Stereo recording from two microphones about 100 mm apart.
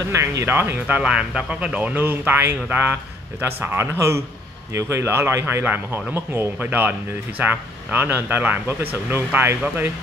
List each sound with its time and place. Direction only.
0.1 s speech: 30° right (ahead or behind)